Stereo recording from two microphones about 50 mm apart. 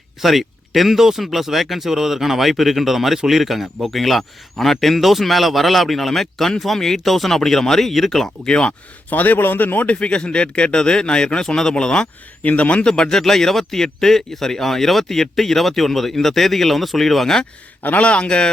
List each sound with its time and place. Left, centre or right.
0.2 s speech: centre
8.4 s speech: centre
9.0 s a man's voice: left
9.9 s speech: left
12.5 s speech: left
12.8 s speech: centre
17.8 s speech: left